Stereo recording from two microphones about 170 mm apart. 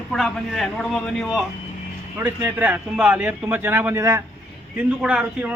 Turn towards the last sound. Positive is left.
turn(degrees=-5)  # may be behind; listen again after turning